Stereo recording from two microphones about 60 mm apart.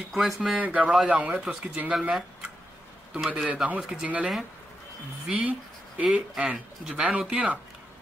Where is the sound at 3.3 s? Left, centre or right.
Right.